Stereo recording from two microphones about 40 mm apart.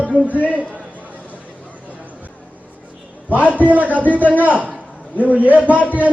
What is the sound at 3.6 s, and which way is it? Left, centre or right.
A man's voice, right.